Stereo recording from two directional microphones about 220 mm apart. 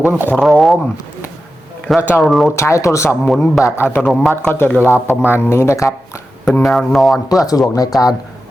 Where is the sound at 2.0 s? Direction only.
10° left (ahead or behind).